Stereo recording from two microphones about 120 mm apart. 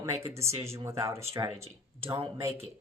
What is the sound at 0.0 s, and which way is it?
A woman's voice, 25° right (ahead or behind).